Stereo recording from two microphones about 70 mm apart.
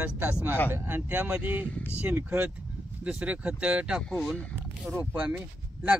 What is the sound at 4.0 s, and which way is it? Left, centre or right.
Speech, centre.